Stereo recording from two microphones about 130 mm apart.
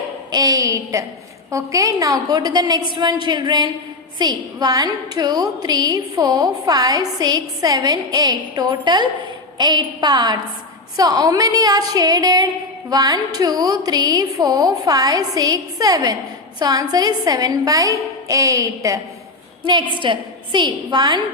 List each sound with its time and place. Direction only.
0.3 s a woman's voice: 30° right (ahead or behind)
19.6 s a woman's voice: 40° right (ahead or behind)